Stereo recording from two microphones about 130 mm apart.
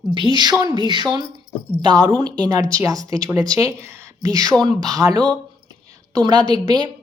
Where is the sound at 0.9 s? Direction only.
35° right (ahead or behind).